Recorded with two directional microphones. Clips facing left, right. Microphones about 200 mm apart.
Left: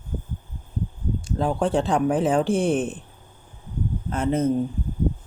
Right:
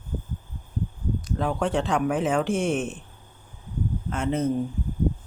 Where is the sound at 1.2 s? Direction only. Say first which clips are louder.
Left 3 dB; 30° left (ahead or behind).